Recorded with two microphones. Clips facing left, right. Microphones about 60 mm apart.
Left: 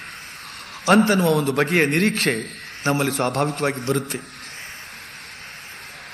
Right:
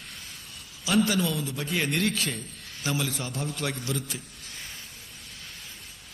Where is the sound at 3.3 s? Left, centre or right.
Left.